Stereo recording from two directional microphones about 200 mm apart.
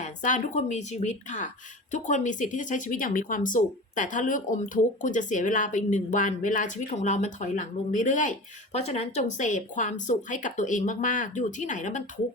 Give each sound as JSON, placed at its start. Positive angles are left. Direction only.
{"t": 0.0, "sound": "speech", "side_deg": 40}